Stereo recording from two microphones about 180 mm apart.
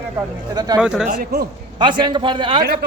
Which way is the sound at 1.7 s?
25° right (ahead or behind).